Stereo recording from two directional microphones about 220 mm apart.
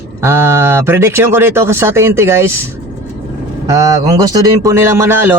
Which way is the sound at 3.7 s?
15° right (ahead or behind).